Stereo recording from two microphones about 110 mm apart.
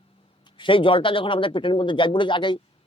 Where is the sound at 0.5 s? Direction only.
50° left (ahead or behind).